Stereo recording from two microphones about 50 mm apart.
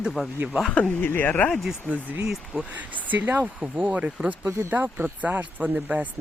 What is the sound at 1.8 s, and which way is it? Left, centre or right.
Speech, right.